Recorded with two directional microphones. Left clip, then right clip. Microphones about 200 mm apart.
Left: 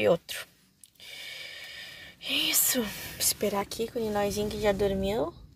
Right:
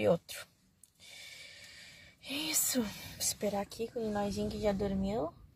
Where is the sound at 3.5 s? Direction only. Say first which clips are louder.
Left 6 dB; 40° left (ahead or behind).